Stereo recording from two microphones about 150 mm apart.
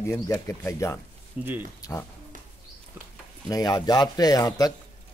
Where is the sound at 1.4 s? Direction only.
10° right (ahead or behind).